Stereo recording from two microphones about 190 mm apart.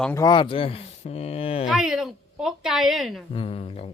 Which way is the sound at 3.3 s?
30° left (ahead or behind).